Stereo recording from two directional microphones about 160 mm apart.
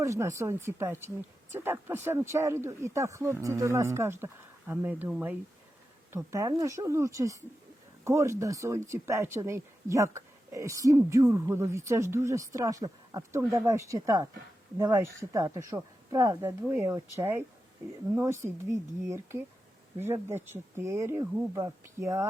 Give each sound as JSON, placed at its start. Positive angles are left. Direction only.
{"t": 0.0, "sound": "speech", "side_deg": -20}